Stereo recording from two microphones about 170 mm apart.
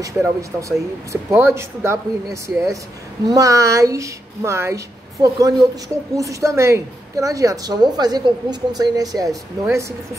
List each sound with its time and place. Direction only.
0.0 s a woman's voice: 20° right (ahead or behind)